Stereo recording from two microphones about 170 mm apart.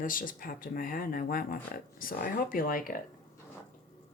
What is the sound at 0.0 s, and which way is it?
Speech, 55° left (ahead or behind).